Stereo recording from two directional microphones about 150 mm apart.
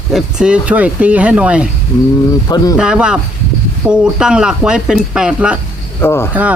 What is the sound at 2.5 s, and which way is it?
Speech, 25° left (ahead or behind).